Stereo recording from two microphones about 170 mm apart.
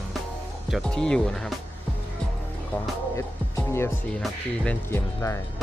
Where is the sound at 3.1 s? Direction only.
15° left (ahead or behind).